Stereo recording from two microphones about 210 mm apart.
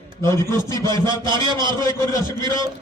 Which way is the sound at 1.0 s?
20° right (ahead or behind).